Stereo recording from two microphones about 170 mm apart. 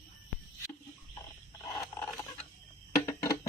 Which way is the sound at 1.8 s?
20° left (ahead or behind).